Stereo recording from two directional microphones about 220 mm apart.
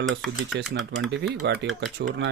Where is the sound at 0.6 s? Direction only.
Centre (ahead or behind).